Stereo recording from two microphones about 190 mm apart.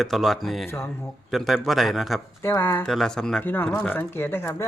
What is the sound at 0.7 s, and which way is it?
Speech, 15° left (ahead or behind).